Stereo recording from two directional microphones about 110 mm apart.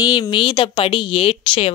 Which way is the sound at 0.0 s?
45° left (ahead or behind).